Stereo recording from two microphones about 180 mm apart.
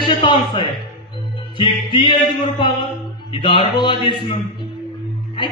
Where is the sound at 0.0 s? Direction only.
30° left (ahead or behind).